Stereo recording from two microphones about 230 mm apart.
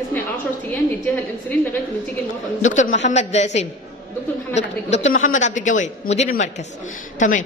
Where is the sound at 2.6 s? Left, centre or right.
Left.